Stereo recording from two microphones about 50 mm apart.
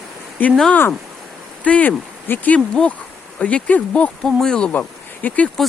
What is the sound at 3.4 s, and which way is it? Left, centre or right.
Speech, left.